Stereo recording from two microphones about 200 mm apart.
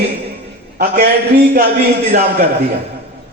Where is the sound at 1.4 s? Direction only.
45° right (ahead or behind).